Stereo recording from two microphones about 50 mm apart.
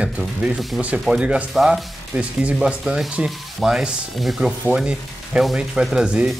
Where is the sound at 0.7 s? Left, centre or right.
Right.